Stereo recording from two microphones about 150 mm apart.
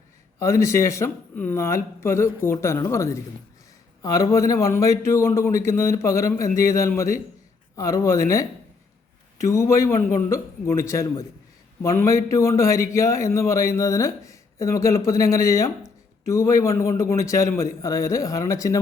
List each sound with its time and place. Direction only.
0.3 s a man's voice: 20° left (ahead or behind)
9.4 s a man's voice: 20° left (ahead or behind)